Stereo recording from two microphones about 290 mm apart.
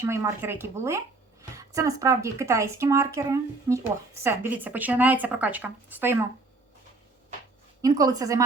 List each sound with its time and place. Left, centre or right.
0.0 s speech: centre
7.8 s speech: centre